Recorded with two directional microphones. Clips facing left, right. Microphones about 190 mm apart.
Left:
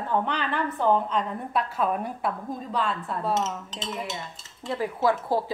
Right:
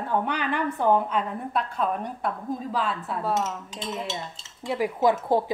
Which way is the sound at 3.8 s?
30° right (ahead or behind).